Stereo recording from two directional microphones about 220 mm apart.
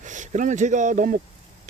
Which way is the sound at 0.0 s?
35° right (ahead or behind).